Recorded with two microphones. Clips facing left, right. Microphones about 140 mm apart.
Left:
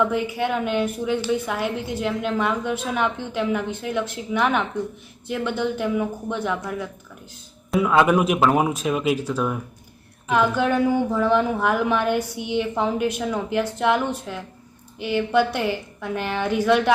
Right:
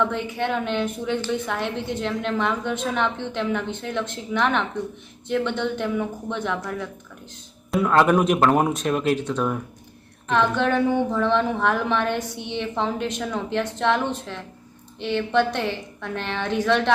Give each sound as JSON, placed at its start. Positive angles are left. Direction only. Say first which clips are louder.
{"t": 0.0, "sound": "a woman's voice", "louder": "left 2 dB", "side_deg": 5}